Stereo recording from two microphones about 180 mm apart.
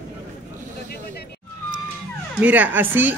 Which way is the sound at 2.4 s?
10° right (ahead or behind).